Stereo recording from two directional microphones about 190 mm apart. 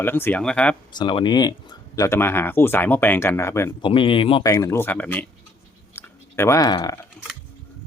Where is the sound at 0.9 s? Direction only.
25° left (ahead or behind).